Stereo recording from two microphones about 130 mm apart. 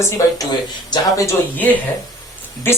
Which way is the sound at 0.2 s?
25° left (ahead or behind).